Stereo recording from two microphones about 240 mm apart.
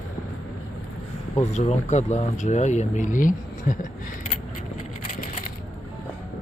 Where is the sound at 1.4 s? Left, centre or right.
Left.